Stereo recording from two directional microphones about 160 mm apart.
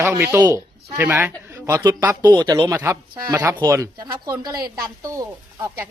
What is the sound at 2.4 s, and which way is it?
Speech, 25° right (ahead or behind).